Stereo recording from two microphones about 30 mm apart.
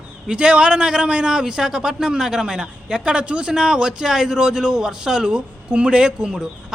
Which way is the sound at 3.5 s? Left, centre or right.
Right.